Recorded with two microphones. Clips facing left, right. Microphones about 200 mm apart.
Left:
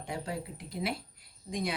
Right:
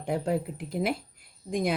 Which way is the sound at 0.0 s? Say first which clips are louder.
Right 9 dB; 55° right (ahead or behind).